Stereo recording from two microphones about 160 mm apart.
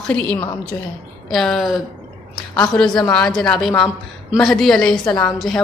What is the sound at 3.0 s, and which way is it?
A woman's voice, 5° left (ahead or behind).